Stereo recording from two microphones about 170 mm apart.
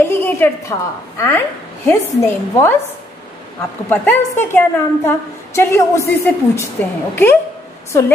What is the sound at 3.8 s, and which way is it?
A woman's voice, 10° left (ahead or behind).